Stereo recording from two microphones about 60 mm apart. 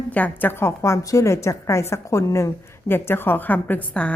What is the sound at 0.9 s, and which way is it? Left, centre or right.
A woman's voice, left.